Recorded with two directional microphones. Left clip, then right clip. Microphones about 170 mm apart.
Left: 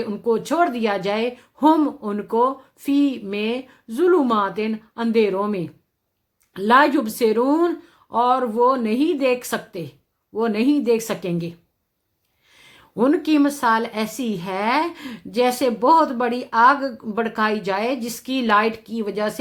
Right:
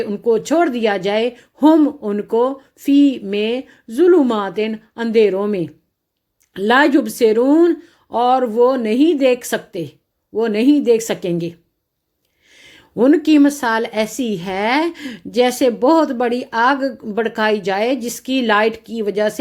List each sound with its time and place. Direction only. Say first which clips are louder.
0.0 s speech: right 5 dB; 20° right (ahead or behind)